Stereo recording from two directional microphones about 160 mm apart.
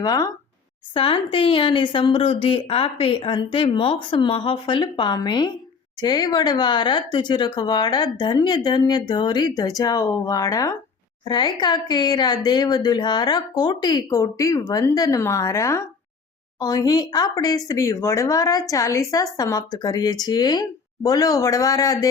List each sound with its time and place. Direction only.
0.0 s a woman's voice: 25° left (ahead or behind)